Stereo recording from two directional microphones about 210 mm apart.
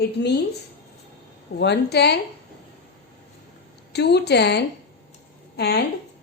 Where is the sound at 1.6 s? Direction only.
55° left (ahead or behind).